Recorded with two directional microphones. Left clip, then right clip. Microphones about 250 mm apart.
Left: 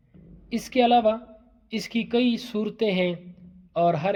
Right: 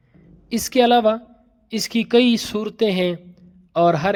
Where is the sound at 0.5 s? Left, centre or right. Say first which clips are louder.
Right 4 dB; right.